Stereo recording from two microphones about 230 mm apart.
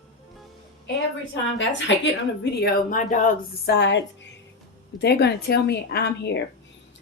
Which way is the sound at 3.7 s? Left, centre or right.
Left.